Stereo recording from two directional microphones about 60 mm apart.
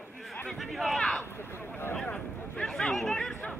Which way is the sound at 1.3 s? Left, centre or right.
Left.